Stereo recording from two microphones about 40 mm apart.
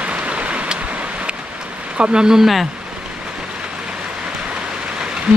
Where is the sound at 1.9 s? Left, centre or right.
Right.